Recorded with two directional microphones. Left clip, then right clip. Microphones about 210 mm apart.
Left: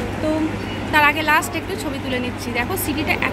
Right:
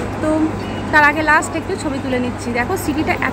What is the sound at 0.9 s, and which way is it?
A woman's voice, 30° right (ahead or behind).